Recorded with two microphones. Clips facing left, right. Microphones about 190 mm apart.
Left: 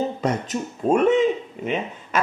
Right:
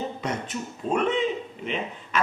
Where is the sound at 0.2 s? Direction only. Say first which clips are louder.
Left 6 dB; 45° left (ahead or behind).